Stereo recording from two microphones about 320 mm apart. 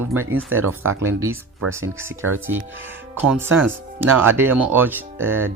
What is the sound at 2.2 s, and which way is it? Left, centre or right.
Speech, right.